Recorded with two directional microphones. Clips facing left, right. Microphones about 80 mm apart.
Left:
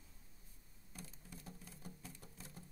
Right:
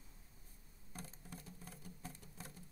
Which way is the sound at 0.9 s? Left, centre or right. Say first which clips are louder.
Right 3 dB; right.